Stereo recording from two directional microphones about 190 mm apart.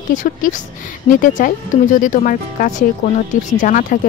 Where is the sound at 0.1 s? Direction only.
40° left (ahead or behind).